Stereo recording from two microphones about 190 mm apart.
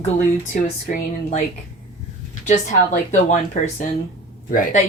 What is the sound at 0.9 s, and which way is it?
Speech, 45° left (ahead or behind).